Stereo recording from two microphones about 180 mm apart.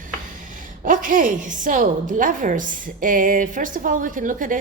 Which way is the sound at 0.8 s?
50° right (ahead or behind).